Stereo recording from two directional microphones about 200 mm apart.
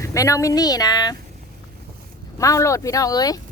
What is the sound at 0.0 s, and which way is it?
Speech, 15° left (ahead or behind).